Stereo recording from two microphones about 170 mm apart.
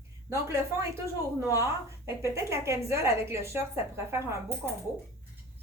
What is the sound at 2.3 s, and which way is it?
A woman's voice, 15° right (ahead or behind).